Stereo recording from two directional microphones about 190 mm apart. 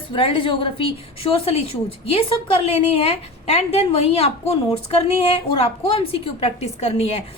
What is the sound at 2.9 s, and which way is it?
A woman's voice, 30° left (ahead or behind).